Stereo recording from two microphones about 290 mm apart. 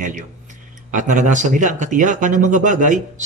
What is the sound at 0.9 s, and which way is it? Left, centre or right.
Speech, right.